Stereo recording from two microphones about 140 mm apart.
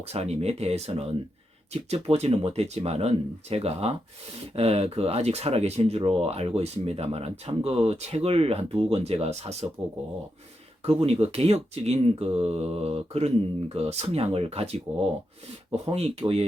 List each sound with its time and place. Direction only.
0.0 s speech: 50° right (ahead or behind)
10.8 s speech: 45° right (ahead or behind)
15.9 s speech: 45° right (ahead or behind)